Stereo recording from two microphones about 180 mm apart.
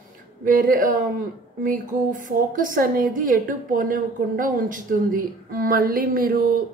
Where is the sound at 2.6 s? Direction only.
50° right (ahead or behind).